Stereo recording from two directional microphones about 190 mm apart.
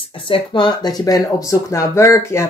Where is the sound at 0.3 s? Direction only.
25° left (ahead or behind).